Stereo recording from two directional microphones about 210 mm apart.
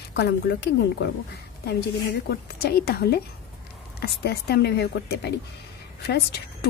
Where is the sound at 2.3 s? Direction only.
50° left (ahead or behind).